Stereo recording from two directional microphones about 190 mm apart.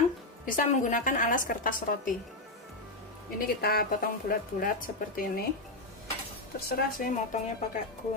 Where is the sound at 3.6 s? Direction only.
50° left (ahead or behind).